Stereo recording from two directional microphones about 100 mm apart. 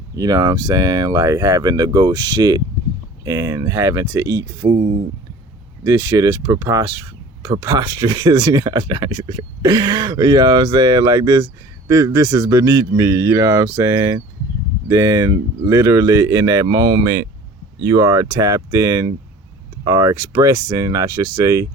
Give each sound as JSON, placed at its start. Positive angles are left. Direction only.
{"t": 0.2, "sound": "speech", "side_deg": -40}
{"t": 5.8, "sound": "speech", "side_deg": -35}